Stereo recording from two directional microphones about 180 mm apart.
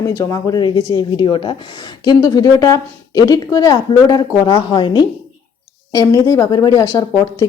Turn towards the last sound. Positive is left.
turn(degrees=20)  # may be behind; listen again after turning